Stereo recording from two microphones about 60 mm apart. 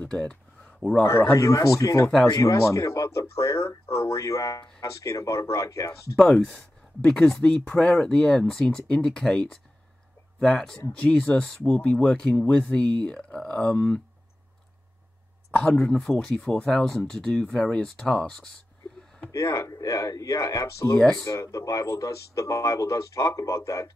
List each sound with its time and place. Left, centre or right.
0.0 s a sound: centre
1.3 s speech: left
4.2 s speech: left
6.4 s speech: centre
15.5 s speech: centre
19.3 s speech: left
21.3 s speech: left